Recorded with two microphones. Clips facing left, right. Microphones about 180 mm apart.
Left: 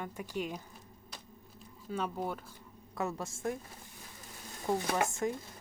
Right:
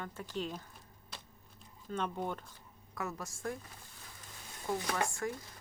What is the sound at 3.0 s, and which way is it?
Speech, 25° left (ahead or behind).